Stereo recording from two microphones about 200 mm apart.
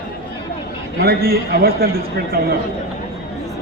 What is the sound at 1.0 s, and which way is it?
Speech, 50° right (ahead or behind).